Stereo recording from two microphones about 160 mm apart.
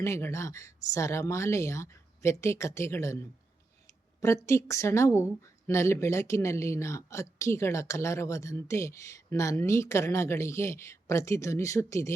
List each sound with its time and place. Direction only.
0.0 s speech: 20° left (ahead or behind)
4.2 s speech: 20° left (ahead or behind)